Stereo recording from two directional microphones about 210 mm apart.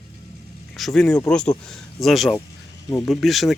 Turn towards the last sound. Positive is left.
turn(degrees=0)  # may be behind; listen again after turning